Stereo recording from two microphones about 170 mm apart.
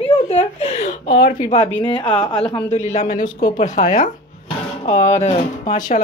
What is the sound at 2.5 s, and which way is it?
Speech, 40° left (ahead or behind).